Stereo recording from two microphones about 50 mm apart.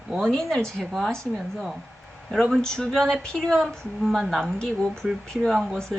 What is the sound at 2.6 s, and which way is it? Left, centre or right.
A woman's voice, centre.